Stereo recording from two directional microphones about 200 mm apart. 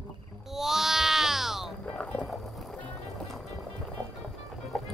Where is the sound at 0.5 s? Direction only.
Centre (ahead or behind).